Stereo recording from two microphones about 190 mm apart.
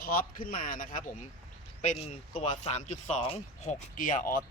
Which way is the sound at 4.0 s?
45° left (ahead or behind).